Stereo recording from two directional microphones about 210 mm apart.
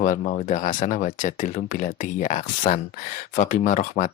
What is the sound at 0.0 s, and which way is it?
Speech, 40° left (ahead or behind).